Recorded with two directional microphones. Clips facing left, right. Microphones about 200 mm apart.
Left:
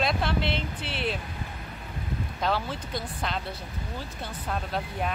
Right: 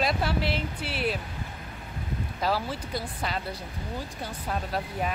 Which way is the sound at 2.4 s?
5° right (ahead or behind).